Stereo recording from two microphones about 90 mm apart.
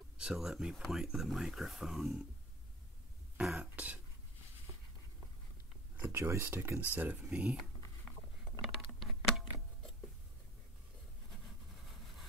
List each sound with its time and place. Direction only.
0.2 s speech: 5° right (ahead or behind)
3.3 s throat clearing: 10° right (ahead or behind)
6.0 s speech: 30° right (ahead or behind)
7.0 s speech: 15° right (ahead or behind)
8.5 s a sound: centre (ahead or behind)